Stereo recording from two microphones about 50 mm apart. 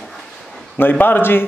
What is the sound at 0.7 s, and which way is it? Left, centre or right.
Speech, left.